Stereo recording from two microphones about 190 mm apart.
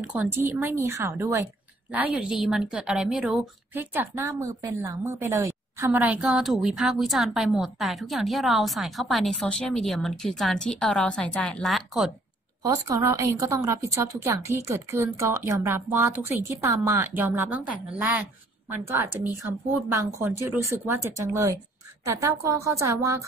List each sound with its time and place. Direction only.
0.0 s a woman's voice: 5° right (ahead or behind)
12.6 s a woman's voice: 15° right (ahead or behind)
18.9 s a woman's voice: 10° right (ahead or behind)